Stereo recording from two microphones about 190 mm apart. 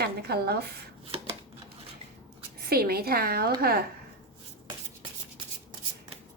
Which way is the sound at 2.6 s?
55° right (ahead or behind).